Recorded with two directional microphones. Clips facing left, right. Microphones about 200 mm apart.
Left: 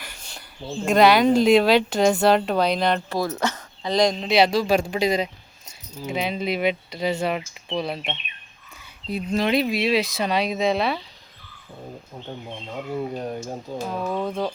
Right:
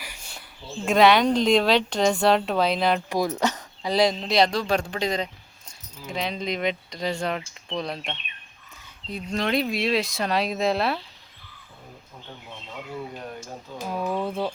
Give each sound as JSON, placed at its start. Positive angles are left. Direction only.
{"t": 0.0, "sound": "a sound", "side_deg": -5}
{"t": 0.9, "sound": "speech", "side_deg": 0}
{"t": 3.1, "sound": "speech", "side_deg": -15}
{"t": 12.7, "sound": "speech", "side_deg": 40}
{"t": 13.7, "sound": "speech", "side_deg": -10}